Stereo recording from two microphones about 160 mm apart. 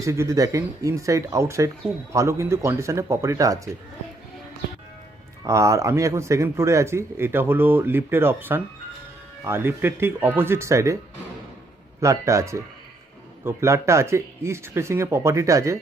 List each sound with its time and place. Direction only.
0.0 s a man's voice: 20° right (ahead or behind)
5.5 s a man's voice: 20° right (ahead or behind)
11.9 s a man's voice: 20° right (ahead or behind)